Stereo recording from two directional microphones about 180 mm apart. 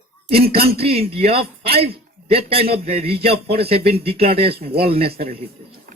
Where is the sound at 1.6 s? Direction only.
60° right (ahead or behind).